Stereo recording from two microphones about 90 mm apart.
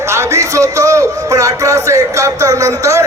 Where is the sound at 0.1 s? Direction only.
30° right (ahead or behind).